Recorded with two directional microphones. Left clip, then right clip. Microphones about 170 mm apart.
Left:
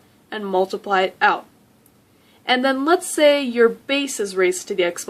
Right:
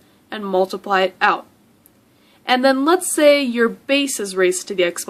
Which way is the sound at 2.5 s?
30° right (ahead or behind).